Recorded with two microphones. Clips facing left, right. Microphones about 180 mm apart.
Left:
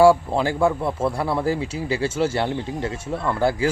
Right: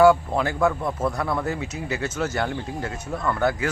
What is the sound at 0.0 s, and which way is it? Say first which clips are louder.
Speech: left 2 dB; 30° left (ahead or behind).